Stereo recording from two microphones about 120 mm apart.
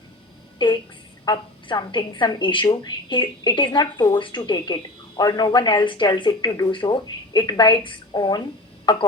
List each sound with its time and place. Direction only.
0.6 s a woman's voice: 40° left (ahead or behind)